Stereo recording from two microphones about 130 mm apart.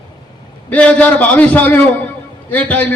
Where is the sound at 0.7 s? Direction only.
10° left (ahead or behind).